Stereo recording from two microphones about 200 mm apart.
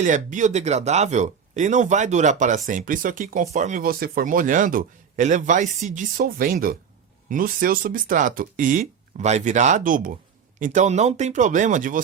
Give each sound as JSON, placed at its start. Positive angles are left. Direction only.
{"t": 0.0, "sound": "speech", "side_deg": -40}